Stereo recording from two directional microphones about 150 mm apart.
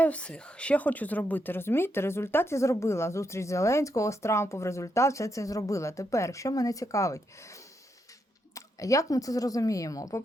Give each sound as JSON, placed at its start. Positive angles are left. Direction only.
{"t": 0.0, "sound": "speech", "side_deg": 10}